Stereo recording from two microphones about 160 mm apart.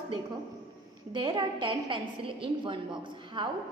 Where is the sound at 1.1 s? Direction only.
30° right (ahead or behind).